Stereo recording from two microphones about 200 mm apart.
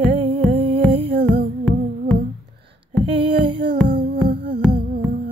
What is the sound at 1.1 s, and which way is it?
Music, 55° right (ahead or behind).